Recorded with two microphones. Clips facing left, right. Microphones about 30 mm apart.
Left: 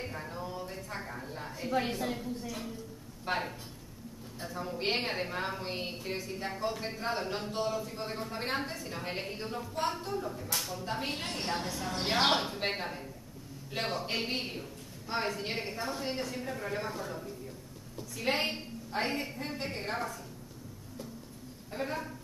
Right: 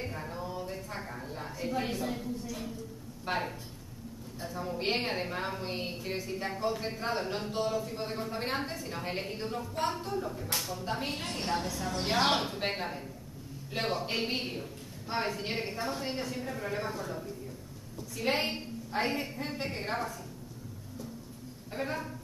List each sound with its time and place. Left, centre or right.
0.0 s a sound: centre
1.7 s a woman's voice: left
3.3 s a woman's voice: centre
21.7 s a woman's voice: centre